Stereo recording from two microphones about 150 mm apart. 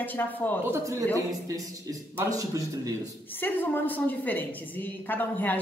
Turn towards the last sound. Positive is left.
turn(degrees=10)  # may be behind; listen again after turning